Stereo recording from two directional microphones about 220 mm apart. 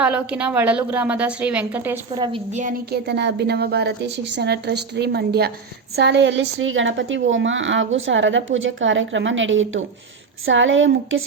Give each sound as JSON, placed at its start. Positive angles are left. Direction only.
{"t": 0.0, "sound": "a woman's voice", "side_deg": -5}
{"t": 2.1, "sound": "a woman's voice", "side_deg": -20}
{"t": 2.5, "sound": "a woman's voice", "side_deg": -35}
{"t": 2.9, "sound": "a woman's voice", "side_deg": -50}